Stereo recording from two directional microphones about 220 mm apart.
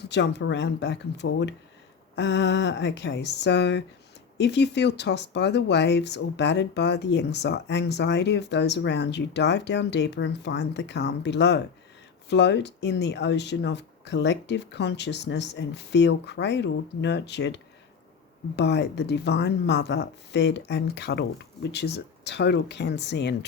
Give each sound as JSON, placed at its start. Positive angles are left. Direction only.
{"t": 0.0, "sound": "speech", "side_deg": 50}